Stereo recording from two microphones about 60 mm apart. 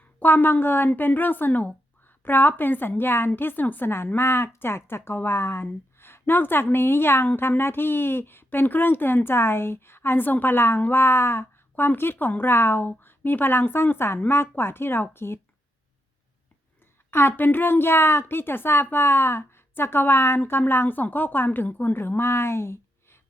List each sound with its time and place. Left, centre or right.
0.2 s a woman's voice: left
17.1 s a woman's voice: left